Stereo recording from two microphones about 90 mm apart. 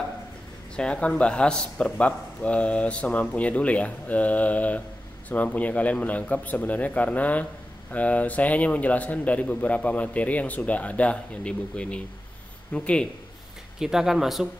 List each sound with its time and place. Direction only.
0.7 s a man's voice: 10° left (ahead or behind)
13.7 s speech: 5° right (ahead or behind)